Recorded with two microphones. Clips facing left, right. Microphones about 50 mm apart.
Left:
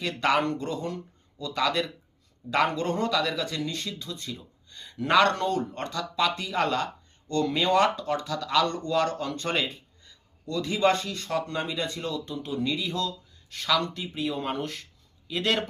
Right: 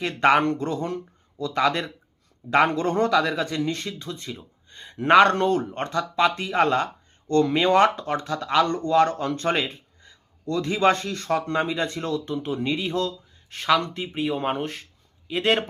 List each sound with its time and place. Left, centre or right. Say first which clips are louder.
0.0 s speech: right 5 dB; right